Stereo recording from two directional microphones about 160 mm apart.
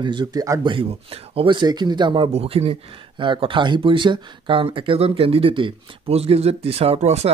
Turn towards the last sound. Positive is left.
turn(degrees=-40)  # may be behind; listen again after turning